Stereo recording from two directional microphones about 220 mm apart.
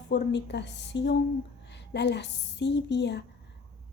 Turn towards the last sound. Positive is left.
turn(degrees=50)  # may be behind; listen again after turning